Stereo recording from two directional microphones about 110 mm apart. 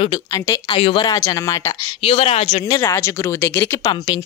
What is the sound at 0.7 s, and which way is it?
Speech, 55° left (ahead or behind).